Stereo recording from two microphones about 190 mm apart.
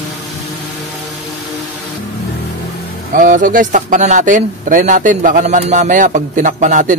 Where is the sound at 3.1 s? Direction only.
45° right (ahead or behind).